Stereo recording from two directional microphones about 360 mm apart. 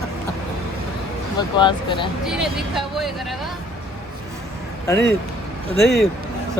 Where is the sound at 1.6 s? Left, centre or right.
Centre.